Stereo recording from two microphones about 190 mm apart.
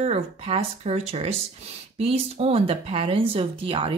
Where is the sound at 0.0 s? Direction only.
35° right (ahead or behind).